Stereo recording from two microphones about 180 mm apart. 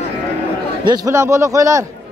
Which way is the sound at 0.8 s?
20° right (ahead or behind).